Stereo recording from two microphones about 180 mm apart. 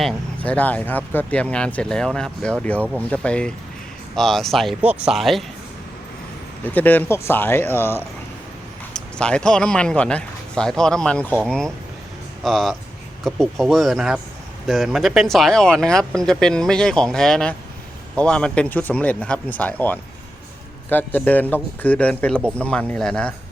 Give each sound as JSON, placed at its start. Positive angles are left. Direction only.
{"t": 0.0, "sound": "speech", "side_deg": 10}
{"t": 6.7, "sound": "speech", "side_deg": 10}
{"t": 20.9, "sound": "speech", "side_deg": 10}